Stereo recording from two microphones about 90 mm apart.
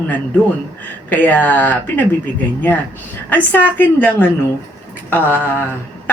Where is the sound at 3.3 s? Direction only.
20° left (ahead or behind).